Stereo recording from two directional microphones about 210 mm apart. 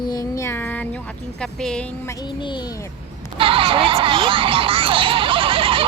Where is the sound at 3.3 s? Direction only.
25° right (ahead or behind).